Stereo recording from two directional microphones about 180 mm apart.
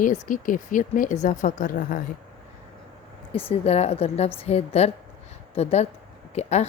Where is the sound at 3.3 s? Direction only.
30° left (ahead or behind).